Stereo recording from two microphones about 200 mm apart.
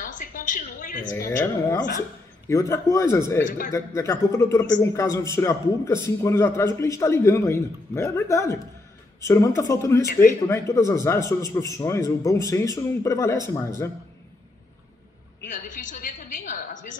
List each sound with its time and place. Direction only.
0.0 s a sound: 40° left (ahead or behind)
1.4 s a man's voice: 15° left (ahead or behind)
3.4 s speech: 45° left (ahead or behind)
3.7 s a man's voice: 15° left (ahead or behind)
15.5 s a woman's voice: 40° left (ahead or behind)